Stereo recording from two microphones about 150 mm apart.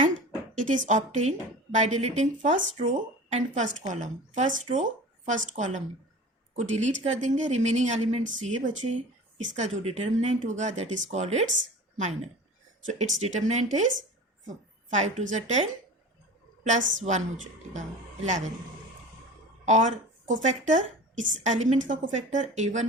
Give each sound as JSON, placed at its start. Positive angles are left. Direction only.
{"t": 0.5, "sound": "a woman's voice", "side_deg": -55}
{"t": 19.6, "sound": "speech", "side_deg": -55}